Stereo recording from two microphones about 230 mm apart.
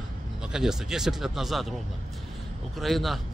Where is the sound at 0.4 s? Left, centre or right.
Centre.